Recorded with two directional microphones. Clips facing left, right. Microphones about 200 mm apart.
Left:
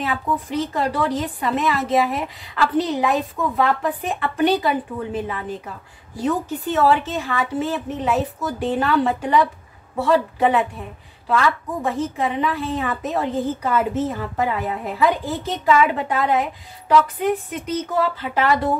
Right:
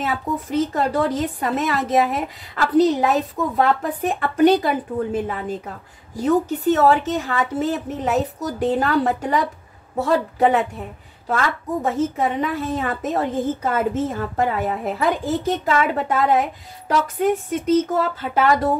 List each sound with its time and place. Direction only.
0.0 s a woman's voice: 45° right (ahead or behind)
6.2 s a woman's voice: 40° right (ahead or behind)